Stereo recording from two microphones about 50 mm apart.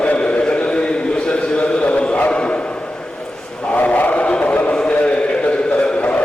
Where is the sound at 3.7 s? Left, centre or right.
Left.